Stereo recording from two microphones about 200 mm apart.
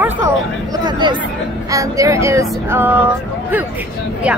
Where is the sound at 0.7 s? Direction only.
20° right (ahead or behind).